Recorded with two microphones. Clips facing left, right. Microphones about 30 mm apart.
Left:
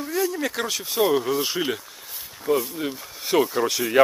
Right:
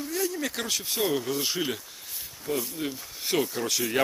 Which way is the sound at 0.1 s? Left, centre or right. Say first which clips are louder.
Left 6 dB; centre.